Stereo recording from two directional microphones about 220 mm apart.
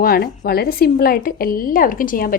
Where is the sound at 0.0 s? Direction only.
45° left (ahead or behind).